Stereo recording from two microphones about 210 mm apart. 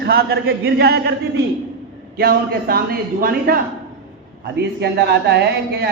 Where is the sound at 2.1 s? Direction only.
45° right (ahead or behind).